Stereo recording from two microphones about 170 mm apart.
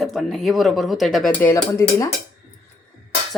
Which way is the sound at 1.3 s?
10° left (ahead or behind).